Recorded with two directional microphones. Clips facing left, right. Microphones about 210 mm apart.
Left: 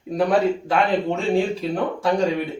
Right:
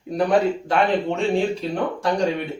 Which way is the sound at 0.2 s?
Centre (ahead or behind).